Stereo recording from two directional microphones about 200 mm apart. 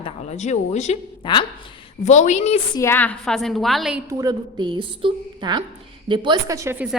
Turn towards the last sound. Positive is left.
turn(degrees=-10)  # may be behind; listen again after turning